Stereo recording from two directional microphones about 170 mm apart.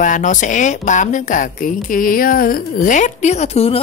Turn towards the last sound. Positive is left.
turn(degrees=35)  # may be behind; listen again after turning